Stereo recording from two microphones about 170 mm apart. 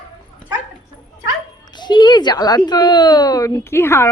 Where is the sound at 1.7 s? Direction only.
25° left (ahead or behind).